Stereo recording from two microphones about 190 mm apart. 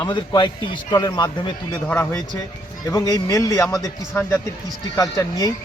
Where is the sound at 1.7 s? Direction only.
5° left (ahead or behind).